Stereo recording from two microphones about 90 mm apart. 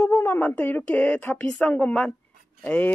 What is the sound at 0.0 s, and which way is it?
Speech, 25° left (ahead or behind).